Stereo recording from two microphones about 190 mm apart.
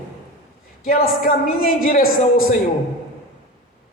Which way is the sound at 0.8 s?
50° left (ahead or behind).